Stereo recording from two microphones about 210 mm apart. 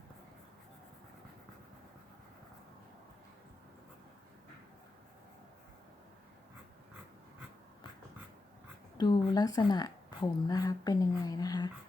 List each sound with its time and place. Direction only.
9.0 s a woman's voice: 20° left (ahead or behind)